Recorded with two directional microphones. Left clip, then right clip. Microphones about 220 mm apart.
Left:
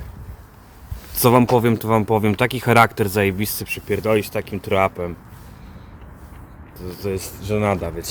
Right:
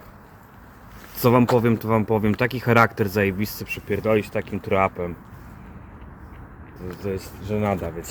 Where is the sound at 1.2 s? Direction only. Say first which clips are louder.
Left 3 dB; 25° left (ahead or behind).